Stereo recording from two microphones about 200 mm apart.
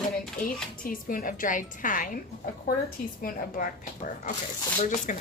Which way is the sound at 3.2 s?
45° left (ahead or behind).